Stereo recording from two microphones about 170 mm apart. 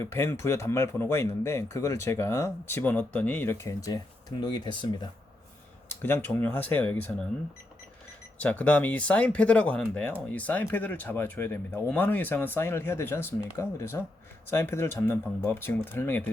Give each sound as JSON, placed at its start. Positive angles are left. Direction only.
{"t": 0.0, "sound": "speech", "side_deg": 15}
{"t": 5.9, "sound": "speech", "side_deg": 10}
{"t": 8.4, "sound": "speech", "side_deg": 10}